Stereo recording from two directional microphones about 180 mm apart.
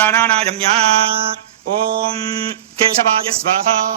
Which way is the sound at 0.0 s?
10° left (ahead or behind).